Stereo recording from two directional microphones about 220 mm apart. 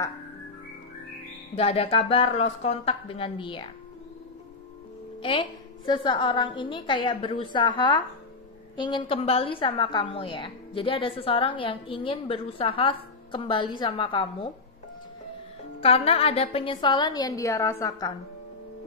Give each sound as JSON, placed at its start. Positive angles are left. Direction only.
{"t": 1.5, "sound": "a woman's voice", "side_deg": 25}
{"t": 5.2, "sound": "a woman's voice", "side_deg": 25}
{"t": 15.8, "sound": "a woman's voice", "side_deg": 30}